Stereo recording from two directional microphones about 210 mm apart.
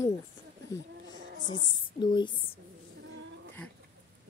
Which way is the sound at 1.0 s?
55° right (ahead or behind).